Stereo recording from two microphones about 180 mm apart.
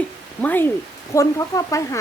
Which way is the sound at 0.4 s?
10° left (ahead or behind).